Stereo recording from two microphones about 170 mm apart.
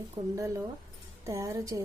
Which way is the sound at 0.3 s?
20° right (ahead or behind).